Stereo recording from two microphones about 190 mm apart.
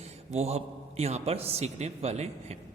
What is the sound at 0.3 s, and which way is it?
A man's voice, 35° right (ahead or behind).